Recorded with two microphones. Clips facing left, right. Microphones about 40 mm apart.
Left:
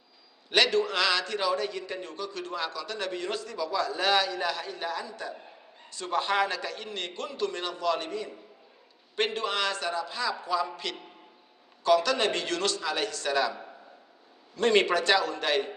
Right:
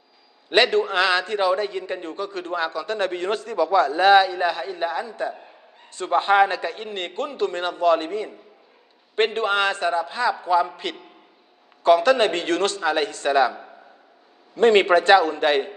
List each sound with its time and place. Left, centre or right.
0.5 s a man's voice: right
11.8 s a man's voice: right